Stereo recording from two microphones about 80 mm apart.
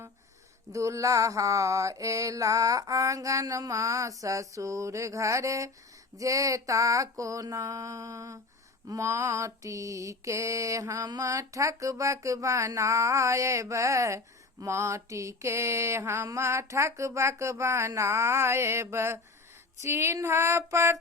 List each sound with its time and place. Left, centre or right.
0.7 s mantra: right